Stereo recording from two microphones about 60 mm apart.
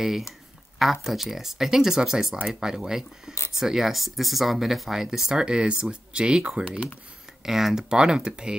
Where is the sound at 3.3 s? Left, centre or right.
Left.